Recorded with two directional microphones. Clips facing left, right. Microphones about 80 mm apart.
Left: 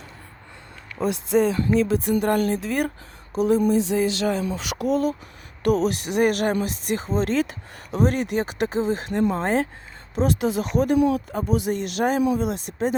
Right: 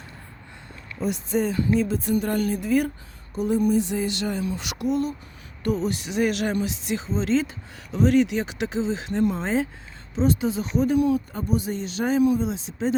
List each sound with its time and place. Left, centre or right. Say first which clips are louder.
1.0 s speech: left 3 dB; left
1.3 s speech: left 3 dB; left
3.3 s speech: left 2 dB; left
5.6 s speech: left 4 dB; left
10.2 s speech: left 1 dB; left